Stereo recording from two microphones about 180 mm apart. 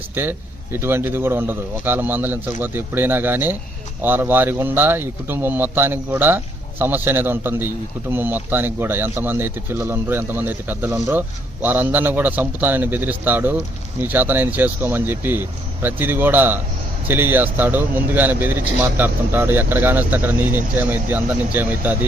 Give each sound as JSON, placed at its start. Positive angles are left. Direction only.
{"t": 0.1, "sound": "speech", "side_deg": -10}